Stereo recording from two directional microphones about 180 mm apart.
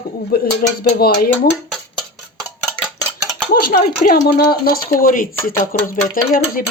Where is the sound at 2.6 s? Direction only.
5° left (ahead or behind).